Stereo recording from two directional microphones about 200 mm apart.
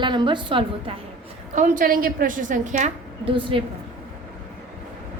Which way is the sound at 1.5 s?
40° right (ahead or behind).